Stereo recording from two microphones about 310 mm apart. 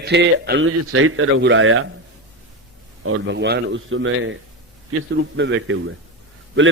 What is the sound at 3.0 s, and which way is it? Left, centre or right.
A man's voice, right.